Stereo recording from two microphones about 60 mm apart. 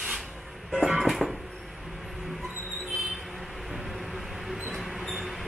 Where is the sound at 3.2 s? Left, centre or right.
Centre.